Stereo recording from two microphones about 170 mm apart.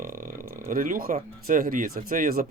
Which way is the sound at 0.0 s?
55° right (ahead or behind).